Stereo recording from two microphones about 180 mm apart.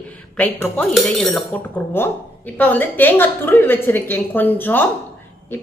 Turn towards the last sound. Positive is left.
turn(degrees=10)  # may be behind; listen again after turning